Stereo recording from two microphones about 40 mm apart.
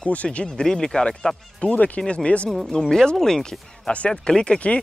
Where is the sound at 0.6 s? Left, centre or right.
Centre.